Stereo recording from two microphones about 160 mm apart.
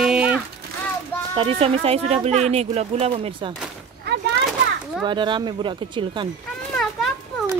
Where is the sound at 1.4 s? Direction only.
35° right (ahead or behind).